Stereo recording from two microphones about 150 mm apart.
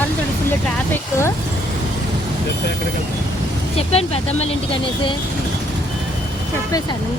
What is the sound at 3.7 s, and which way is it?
Speech, 40° left (ahead or behind).